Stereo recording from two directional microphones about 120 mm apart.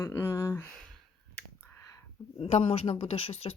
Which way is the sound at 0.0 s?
20° left (ahead or behind).